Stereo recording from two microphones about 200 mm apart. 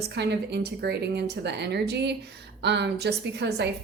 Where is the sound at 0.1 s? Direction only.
55° right (ahead or behind).